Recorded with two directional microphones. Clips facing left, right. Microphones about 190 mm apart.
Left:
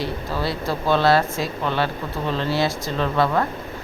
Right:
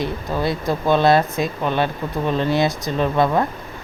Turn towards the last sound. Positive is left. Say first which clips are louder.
# right 3 dB
turn(degrees=-15)  # may be behind; listen again after turning